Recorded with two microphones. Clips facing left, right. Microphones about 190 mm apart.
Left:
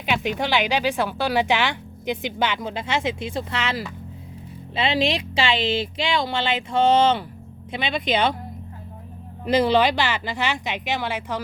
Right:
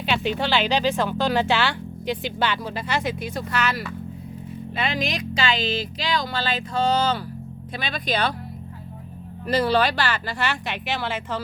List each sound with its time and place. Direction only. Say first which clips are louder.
0.0 s speech: even; 10° left (ahead or behind)
9.5 s speech: left 2 dB; 20° left (ahead or behind)